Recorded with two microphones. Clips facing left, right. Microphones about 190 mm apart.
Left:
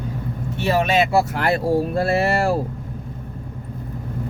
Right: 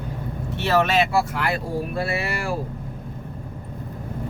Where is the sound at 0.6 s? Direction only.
15° left (ahead or behind).